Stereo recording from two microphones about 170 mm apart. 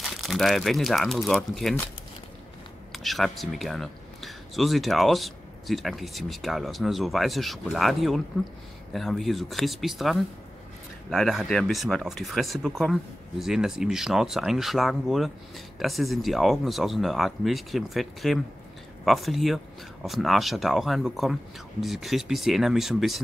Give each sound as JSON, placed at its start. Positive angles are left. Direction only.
{"t": 0.2, "sound": "speech", "side_deg": 0}
{"t": 2.9, "sound": "speech", "side_deg": 0}